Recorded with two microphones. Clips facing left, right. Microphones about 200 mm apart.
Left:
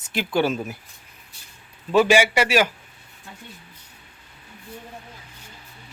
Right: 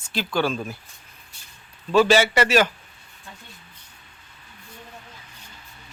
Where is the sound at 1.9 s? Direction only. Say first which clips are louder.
Even; 15° left (ahead or behind).